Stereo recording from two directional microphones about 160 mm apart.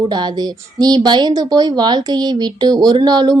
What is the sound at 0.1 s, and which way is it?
A woman's voice, 25° right (ahead or behind).